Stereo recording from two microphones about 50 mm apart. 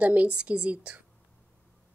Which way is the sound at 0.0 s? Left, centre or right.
Right.